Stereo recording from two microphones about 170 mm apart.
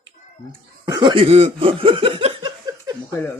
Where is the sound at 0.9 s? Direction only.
25° right (ahead or behind).